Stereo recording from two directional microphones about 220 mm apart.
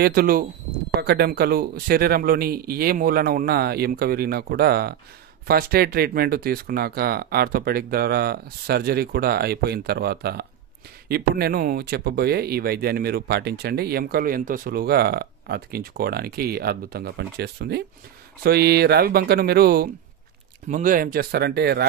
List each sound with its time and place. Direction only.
0.0 s speech: 45° right (ahead or behind)